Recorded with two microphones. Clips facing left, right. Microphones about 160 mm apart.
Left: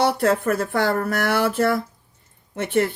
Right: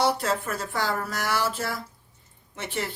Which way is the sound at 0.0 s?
55° left (ahead or behind).